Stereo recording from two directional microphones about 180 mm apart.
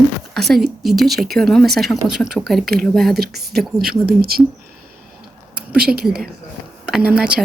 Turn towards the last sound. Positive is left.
turn(degrees=-5)  # may be behind; listen again after turning